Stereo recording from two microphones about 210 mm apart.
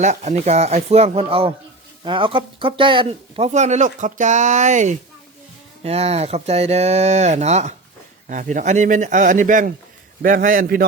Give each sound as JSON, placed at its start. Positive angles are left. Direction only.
{"t": 0.0, "sound": "speech", "side_deg": -35}